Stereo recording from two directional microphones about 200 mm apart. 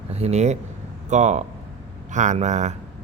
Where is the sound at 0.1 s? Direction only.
30° right (ahead or behind).